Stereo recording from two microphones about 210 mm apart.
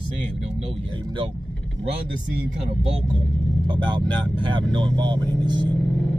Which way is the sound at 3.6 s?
20° right (ahead or behind).